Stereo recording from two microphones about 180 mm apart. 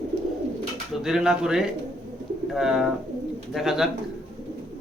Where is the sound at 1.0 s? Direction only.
5° right (ahead or behind).